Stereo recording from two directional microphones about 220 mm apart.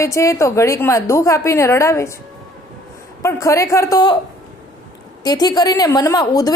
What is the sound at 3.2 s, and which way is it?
Speech, 15° left (ahead or behind).